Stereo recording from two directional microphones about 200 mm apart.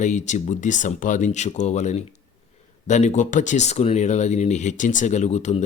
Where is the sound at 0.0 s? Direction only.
35° left (ahead or behind).